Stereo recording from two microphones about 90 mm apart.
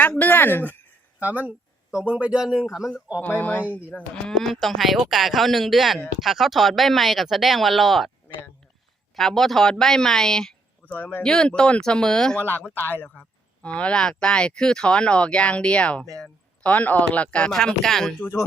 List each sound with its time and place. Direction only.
0.2 s speech: 20° left (ahead or behind)
1.2 s a man's voice: 20° right (ahead or behind)
3.2 s speech: 20° left (ahead or behind)
4.1 s speech: 5° left (ahead or behind)
9.1 s speech: 5° left (ahead or behind)
10.9 s speech: 20° left (ahead or behind)
11.2 s speech: 10° left (ahead or behind)
12.4 s speech: 20° left (ahead or behind); by 18.1 s 5° left (ahead or behind)
18.2 s speech: 30° left (ahead or behind)